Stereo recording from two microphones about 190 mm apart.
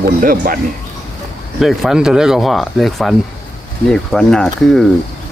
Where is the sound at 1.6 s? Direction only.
Centre (ahead or behind).